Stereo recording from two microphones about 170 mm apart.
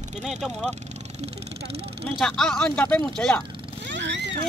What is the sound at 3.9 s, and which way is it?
Vehicle, 90° right.